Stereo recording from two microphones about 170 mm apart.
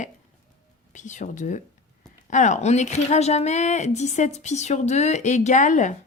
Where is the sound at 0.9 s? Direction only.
45° left (ahead or behind).